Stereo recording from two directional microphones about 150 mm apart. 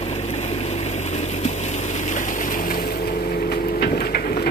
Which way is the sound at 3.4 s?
90° left.